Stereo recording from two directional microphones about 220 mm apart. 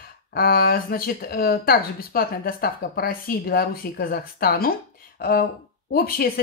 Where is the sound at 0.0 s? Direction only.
45° left (ahead or behind).